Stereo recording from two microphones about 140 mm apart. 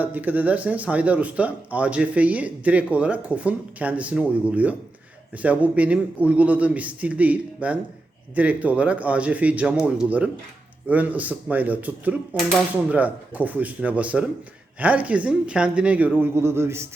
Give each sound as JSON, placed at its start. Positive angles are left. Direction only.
{"t": 0.0, "sound": "speech", "side_deg": -10}